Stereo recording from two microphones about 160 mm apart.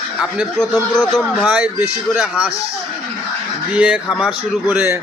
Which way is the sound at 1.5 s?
10° right (ahead or behind).